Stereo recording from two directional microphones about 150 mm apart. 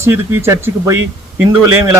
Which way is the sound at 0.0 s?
15° right (ahead or behind).